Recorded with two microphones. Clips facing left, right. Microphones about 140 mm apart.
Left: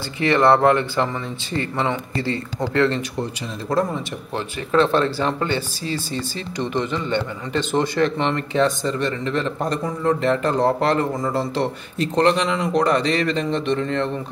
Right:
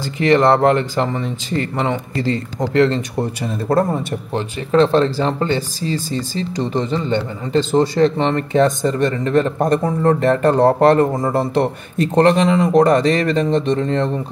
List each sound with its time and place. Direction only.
0.4 s speech: 35° right (ahead or behind)
2.7 s speech: 30° right (ahead or behind)
3.2 s a man's voice: 55° right (ahead or behind)
4.3 s a man's voice: 35° right (ahead or behind)